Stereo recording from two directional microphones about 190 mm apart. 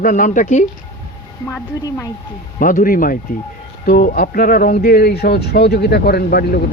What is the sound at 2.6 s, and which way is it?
Speech, 45° left (ahead or behind).